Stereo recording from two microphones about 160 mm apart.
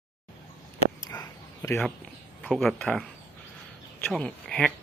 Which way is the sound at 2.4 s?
Centre (ahead or behind).